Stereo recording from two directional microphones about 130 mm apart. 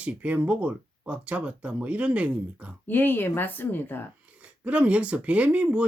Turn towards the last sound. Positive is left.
turn(degrees=-10)  # may be behind; listen again after turning